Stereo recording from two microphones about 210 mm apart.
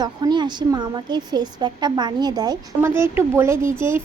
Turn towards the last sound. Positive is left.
turn(degrees=-10)  # may be behind; listen again after turning